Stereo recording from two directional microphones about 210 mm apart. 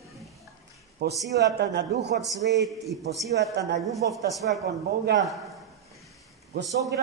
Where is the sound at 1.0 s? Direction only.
50° right (ahead or behind).